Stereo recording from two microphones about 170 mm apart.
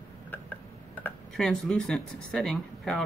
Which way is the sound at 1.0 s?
5° left (ahead or behind).